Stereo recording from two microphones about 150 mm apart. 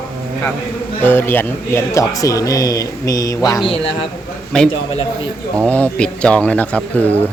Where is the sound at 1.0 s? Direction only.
15° left (ahead or behind).